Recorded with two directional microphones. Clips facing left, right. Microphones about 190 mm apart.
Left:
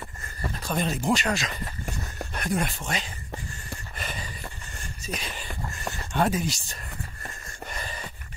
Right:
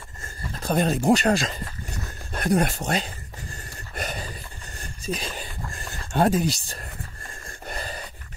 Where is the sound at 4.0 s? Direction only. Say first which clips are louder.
Right 5 dB; 45° right (ahead or behind).